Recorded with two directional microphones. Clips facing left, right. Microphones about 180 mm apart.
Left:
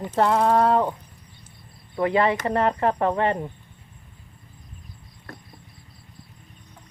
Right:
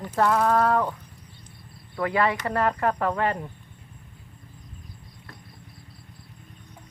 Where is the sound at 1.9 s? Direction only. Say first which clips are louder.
Left 3 dB; 25° left (ahead or behind).